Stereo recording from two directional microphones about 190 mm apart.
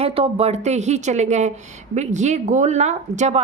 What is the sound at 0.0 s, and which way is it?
A woman's voice, 30° right (ahead or behind).